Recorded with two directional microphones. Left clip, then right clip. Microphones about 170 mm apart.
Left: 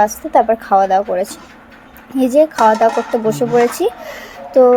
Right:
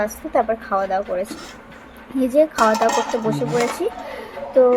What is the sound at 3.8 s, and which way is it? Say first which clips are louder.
Speech: left 6 dB; 20° left (ahead or behind).